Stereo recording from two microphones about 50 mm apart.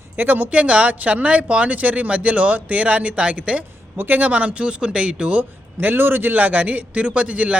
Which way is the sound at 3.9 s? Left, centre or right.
Right.